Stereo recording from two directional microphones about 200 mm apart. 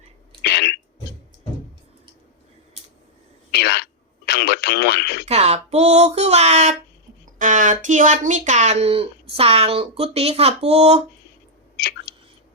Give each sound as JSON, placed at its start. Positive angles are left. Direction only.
{"t": 0.4, "sound": "throat clearing", "side_deg": 55}
{"t": 3.5, "sound": "a sound", "side_deg": 55}
{"t": 4.3, "sound": "radio", "side_deg": 55}
{"t": 5.3, "sound": "speech", "side_deg": -35}